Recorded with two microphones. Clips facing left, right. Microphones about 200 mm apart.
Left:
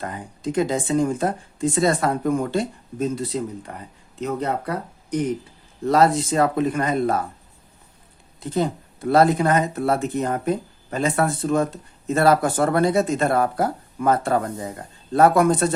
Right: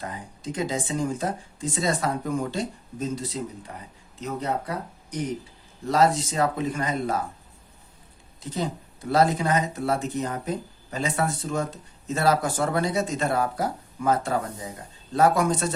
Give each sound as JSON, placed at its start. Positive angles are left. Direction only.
{"t": 0.5, "sound": "speech", "side_deg": 55}
{"t": 5.9, "sound": "speech", "side_deg": 60}
{"t": 8.4, "sound": "speech", "side_deg": 55}